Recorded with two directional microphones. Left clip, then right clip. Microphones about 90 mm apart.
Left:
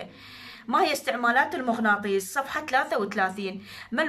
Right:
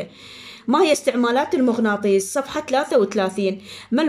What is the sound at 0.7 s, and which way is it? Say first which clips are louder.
A woman's voice: right 7 dB; 35° right (ahead or behind).